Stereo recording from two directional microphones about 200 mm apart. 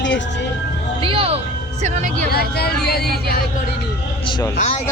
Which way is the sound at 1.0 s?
25° right (ahead or behind).